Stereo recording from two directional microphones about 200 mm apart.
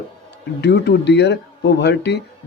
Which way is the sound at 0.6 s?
60° left (ahead or behind).